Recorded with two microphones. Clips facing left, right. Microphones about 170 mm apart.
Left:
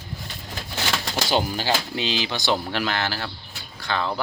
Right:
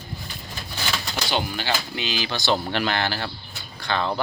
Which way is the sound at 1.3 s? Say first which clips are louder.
Left 3 dB; 35° left (ahead or behind).